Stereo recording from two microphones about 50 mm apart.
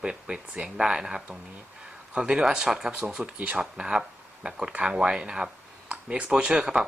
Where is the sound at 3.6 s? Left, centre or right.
Centre.